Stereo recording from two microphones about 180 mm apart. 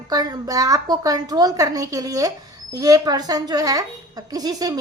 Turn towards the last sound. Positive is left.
turn(degrees=-20)  # may be behind; listen again after turning